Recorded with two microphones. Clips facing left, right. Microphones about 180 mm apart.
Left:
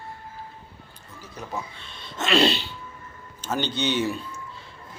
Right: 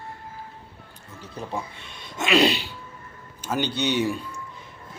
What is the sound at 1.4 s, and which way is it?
Speech, 30° right (ahead or behind).